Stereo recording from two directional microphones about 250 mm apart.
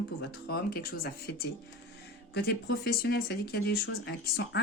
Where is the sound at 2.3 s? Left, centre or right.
Left.